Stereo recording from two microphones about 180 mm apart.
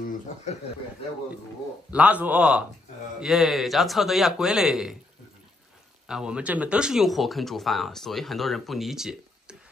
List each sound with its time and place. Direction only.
1.9 s a man's voice: 5° right (ahead or behind)
6.0 s speech: 5° right (ahead or behind)